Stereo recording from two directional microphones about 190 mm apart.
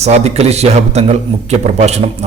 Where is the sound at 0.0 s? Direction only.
35° right (ahead or behind).